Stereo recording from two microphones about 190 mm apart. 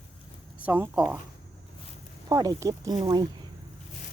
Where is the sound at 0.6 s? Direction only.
10° right (ahead or behind).